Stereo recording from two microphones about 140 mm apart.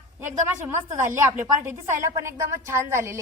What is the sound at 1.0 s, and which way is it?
A woman's voice, 20° right (ahead or behind).